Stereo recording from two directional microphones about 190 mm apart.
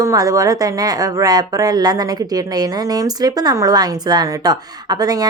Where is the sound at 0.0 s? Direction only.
15° right (ahead or behind).